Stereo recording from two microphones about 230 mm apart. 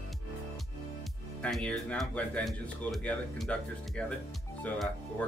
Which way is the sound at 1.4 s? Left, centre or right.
Centre.